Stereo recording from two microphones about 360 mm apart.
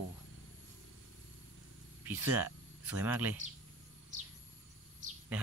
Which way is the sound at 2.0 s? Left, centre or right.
Centre.